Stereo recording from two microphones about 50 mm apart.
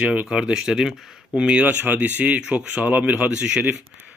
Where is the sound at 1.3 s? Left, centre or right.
Centre.